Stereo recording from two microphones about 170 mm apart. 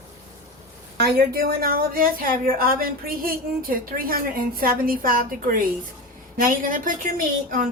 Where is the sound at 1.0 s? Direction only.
60° right (ahead or behind).